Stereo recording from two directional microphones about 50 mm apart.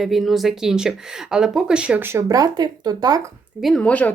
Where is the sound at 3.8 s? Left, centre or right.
Left.